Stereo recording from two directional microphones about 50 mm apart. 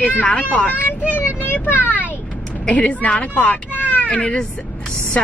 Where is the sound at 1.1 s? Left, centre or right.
Left.